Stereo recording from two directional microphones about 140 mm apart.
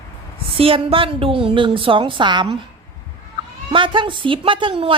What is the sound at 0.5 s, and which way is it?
A woman's voice, 45° right (ahead or behind).